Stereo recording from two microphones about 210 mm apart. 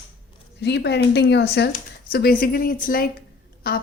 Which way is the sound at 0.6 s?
55° left (ahead or behind).